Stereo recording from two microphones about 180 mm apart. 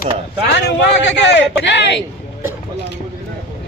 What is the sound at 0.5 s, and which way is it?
A man's voice, 70° left (ahead or behind).